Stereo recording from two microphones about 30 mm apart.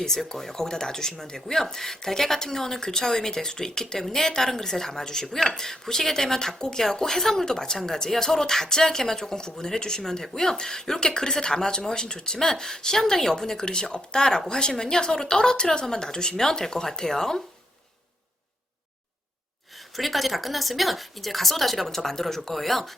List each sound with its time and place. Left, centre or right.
0.3 s a woman's voice: centre
20.0 s speech: centre